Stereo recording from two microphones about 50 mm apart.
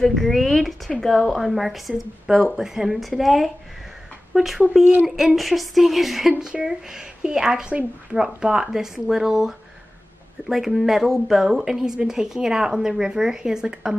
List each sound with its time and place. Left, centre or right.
0.0 s speech: centre